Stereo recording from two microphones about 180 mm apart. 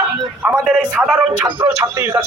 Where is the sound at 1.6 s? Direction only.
10° right (ahead or behind).